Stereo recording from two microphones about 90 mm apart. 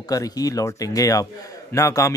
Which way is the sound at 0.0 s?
40° left (ahead or behind).